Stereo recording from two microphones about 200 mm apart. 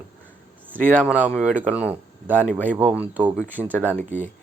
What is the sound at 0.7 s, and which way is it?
Speech, 10° right (ahead or behind).